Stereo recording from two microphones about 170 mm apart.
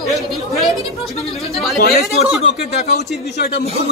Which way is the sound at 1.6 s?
Centre (ahead or behind).